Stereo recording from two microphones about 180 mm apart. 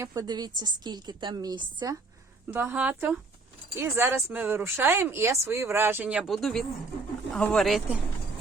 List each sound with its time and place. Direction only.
0.0 s a woman's voice: 20° right (ahead or behind)
2.5 s speech: 10° right (ahead or behind)